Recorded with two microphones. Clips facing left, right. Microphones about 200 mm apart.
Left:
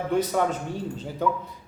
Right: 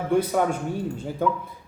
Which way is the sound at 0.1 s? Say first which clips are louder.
Right 3 dB; 10° right (ahead or behind).